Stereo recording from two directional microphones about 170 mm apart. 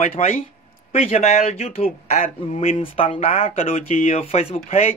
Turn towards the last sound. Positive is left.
turn(degrees=40)  # may be behind; listen again after turning